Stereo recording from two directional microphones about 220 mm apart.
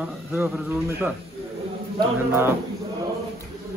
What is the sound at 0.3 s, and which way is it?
Speech, 10° right (ahead or behind).